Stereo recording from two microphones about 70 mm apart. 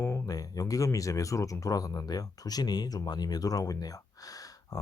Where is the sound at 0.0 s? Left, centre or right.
Left.